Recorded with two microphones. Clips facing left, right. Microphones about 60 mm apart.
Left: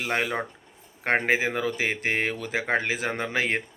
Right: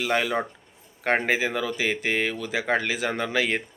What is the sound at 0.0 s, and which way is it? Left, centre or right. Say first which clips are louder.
Speech: right 3 dB; left.